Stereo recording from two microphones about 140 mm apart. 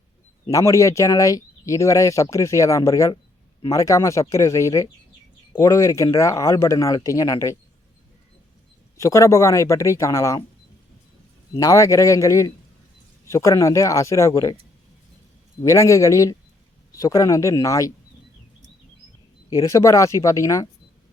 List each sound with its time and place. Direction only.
0.4 s speech: 20° left (ahead or behind)
9.0 s speech: 20° left (ahead or behind)
11.5 s speech: 20° left (ahead or behind)
15.6 s speech: 25° left (ahead or behind)
19.5 s speech: 25° left (ahead or behind)